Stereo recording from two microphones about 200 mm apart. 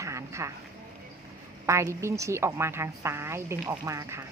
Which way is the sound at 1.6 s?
15° right (ahead or behind).